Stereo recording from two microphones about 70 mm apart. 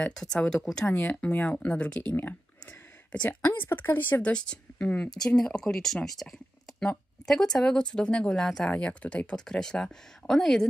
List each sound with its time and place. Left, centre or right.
0.0 s speech: centre
2.6 s a sound: centre
3.3 s speech: left
4.3 s speech: centre